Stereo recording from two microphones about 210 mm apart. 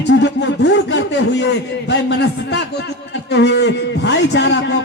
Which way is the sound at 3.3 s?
55° left (ahead or behind).